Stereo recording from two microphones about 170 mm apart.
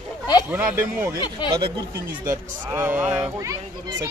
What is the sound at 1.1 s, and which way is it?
Speech, 25° left (ahead or behind).